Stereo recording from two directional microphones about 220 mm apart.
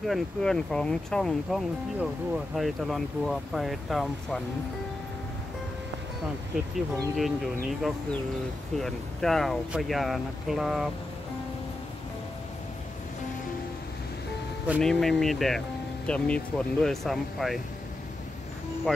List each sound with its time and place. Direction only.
0.0 s speech: centre (ahead or behind)
7.2 s speech: centre (ahead or behind)
14.7 s speech: centre (ahead or behind)